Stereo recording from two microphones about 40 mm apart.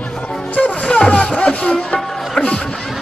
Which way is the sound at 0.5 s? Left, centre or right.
Left.